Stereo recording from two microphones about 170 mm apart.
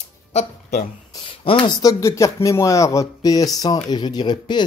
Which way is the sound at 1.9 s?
15° left (ahead or behind).